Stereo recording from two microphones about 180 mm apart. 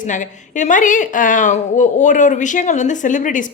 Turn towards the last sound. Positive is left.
turn(degrees=45)  # may be behind; listen again after turning